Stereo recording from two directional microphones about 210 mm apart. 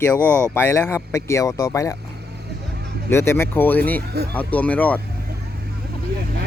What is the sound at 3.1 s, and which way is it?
Speech, 10° left (ahead or behind).